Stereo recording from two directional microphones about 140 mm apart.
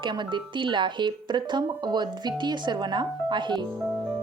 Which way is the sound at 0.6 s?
35° right (ahead or behind).